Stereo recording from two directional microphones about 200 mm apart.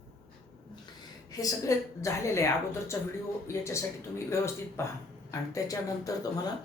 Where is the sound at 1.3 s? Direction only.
15° left (ahead or behind).